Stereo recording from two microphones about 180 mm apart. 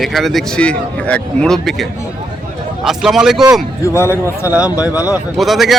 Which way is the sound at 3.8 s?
15° left (ahead or behind).